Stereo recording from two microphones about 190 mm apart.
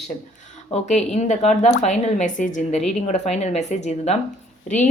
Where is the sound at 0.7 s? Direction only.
35° left (ahead or behind).